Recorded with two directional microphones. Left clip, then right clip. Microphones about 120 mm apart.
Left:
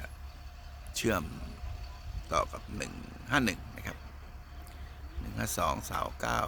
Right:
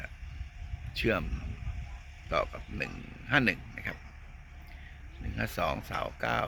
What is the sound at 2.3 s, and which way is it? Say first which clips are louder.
Speech: even; 5° left (ahead or behind).